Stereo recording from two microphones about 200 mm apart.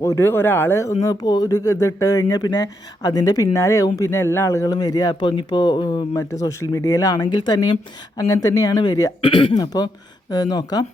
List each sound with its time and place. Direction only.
0.0 s speech: 15° left (ahead or behind)